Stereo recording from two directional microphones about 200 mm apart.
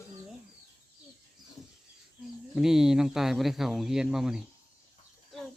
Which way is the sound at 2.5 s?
Centre (ahead or behind).